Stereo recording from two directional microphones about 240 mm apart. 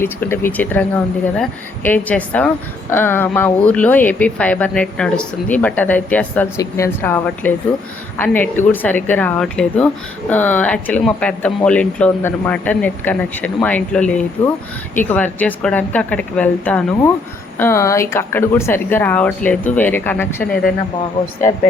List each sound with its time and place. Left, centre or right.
0.0 s a woman's voice: centre